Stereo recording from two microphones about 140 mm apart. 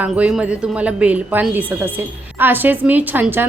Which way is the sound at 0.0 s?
10° right (ahead or behind).